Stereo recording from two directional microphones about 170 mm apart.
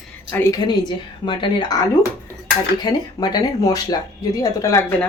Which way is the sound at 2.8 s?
25° left (ahead or behind).